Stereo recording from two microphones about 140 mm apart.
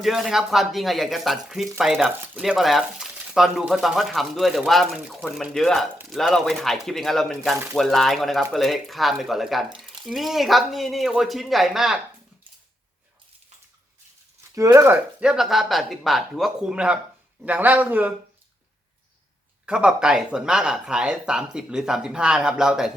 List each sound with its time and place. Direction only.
0.0 s speech: centre (ahead or behind)
14.5 s speech: 25° right (ahead or behind)
15.2 s a man's voice: 5° right (ahead or behind)
19.6 s speech: 5° right (ahead or behind)